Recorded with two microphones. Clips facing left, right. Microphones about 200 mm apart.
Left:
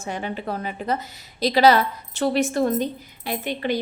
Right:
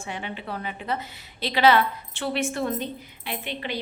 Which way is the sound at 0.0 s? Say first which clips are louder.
Left 5 dB; 40° left (ahead or behind).